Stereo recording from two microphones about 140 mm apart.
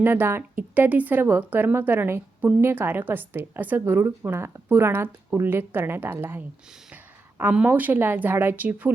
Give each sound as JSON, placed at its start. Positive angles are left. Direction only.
{"t": 0.0, "sound": "a woman's voice", "side_deg": -15}